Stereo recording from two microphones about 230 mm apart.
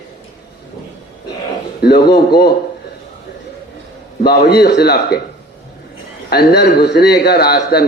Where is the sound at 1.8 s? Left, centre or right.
Left.